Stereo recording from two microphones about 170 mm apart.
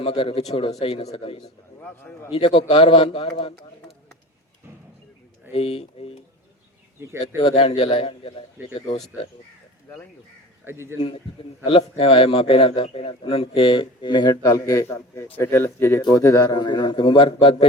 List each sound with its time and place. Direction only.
0.0 s a man's voice: 35° left (ahead or behind)
1.8 s a man's voice: 10° left (ahead or behind)
2.3 s a man's voice: 30° left (ahead or behind)
5.5 s a man's voice: 35° left (ahead or behind)
7.0 s speech: 15° right (ahead or behind)
7.4 s a man's voice: 35° left (ahead or behind)
10.7 s speech: 15° right (ahead or behind)
11.6 s a man's voice: 35° left (ahead or behind)